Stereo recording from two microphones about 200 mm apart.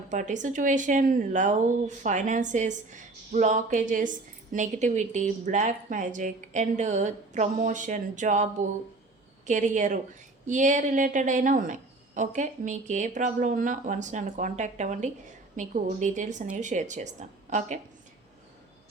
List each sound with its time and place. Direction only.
0.1 s speech: 40° right (ahead or behind)
9.5 s speech: 40° right (ahead or behind)